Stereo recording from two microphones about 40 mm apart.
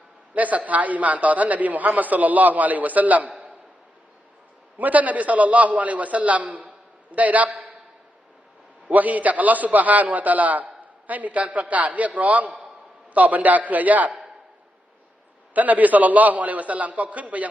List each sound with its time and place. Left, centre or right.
0.3 s a man's voice: right
4.8 s a man's voice: right
8.9 s a man's voice: right
14.1 s a sound: centre
15.5 s a man's voice: right